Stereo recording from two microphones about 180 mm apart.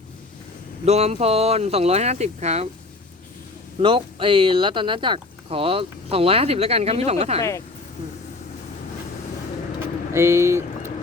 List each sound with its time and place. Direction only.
0.9 s speech: 35° right (ahead or behind)
3.8 s speech: 30° right (ahead or behind)
10.1 s speech: 15° right (ahead or behind)